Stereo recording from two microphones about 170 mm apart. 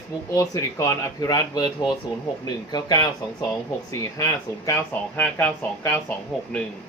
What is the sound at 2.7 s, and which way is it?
Speech, 25° left (ahead or behind).